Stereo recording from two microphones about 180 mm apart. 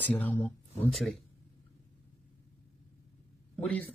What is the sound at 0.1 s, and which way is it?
Speech, 10° left (ahead or behind).